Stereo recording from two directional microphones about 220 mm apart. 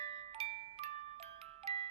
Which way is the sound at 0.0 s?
30° right (ahead or behind).